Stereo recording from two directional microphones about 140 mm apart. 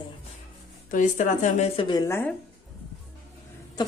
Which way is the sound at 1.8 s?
30° left (ahead or behind).